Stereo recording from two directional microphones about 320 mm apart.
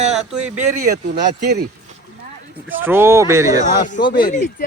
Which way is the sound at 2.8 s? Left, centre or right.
Centre.